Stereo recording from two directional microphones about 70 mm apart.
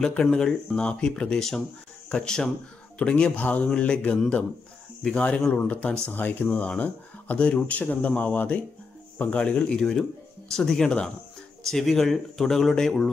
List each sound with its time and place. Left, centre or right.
0.0 s speech: centre